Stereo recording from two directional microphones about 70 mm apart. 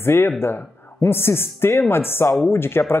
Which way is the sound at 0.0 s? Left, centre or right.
Left.